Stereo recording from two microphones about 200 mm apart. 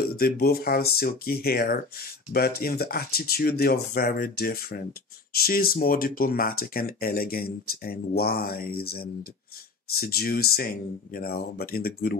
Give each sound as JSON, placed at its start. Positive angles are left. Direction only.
{"t": 0.1, "sound": "speech", "side_deg": 50}